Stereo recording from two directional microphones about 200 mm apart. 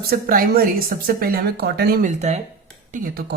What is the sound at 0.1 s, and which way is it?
Speech, 45° right (ahead or behind).